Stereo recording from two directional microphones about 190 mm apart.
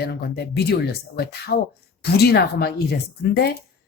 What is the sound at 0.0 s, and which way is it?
Speech, 55° left (ahead or behind).